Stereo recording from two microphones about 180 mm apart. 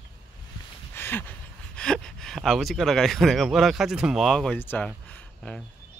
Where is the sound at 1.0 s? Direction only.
10° left (ahead or behind).